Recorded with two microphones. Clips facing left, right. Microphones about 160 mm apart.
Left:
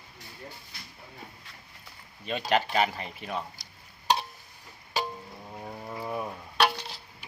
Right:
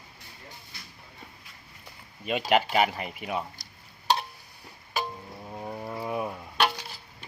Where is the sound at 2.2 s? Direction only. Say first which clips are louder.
Right 3 dB; 10° right (ahead or behind).